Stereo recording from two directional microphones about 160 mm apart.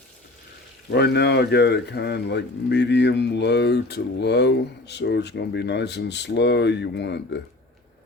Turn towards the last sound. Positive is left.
turn(degrees=90)